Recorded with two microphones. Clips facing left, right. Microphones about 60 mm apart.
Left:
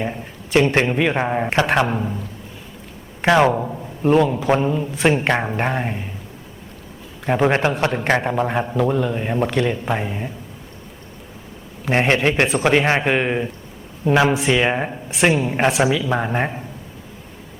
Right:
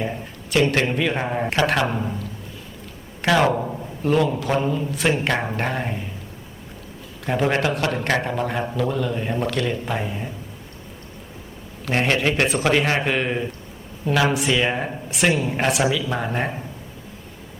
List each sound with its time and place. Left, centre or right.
0.5 s a man's voice: left
3.2 s a man's voice: left
3.5 s a man's voice: centre
4.0 s a man's voice: centre
7.3 s a man's voice: left
8.3 s a man's voice: centre
11.9 s a man's voice: left